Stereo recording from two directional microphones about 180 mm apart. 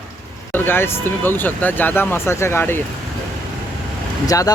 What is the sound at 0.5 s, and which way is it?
Speech, 10° left (ahead or behind).